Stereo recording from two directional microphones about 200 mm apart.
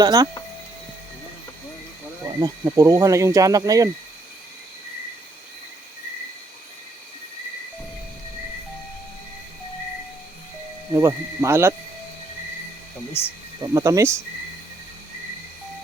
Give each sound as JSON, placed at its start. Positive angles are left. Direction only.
{"t": 0.0, "sound": "speech", "side_deg": -20}
{"t": 2.2, "sound": "speech", "side_deg": -15}
{"t": 10.9, "sound": "speech", "side_deg": -15}
{"t": 13.2, "sound": "speech", "side_deg": 10}
{"t": 13.6, "sound": "speech", "side_deg": -15}